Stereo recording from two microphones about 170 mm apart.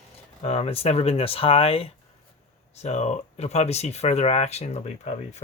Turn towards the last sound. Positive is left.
turn(degrees=40)  # may be behind; listen again after turning